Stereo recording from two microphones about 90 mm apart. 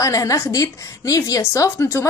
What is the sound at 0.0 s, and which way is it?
A woman's voice, 40° left (ahead or behind).